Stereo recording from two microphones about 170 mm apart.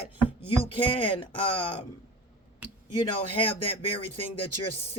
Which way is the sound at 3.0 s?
30° left (ahead or behind).